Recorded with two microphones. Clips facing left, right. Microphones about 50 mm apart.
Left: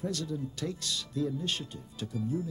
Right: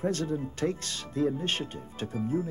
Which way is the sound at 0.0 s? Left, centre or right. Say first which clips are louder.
Right 5 dB; right.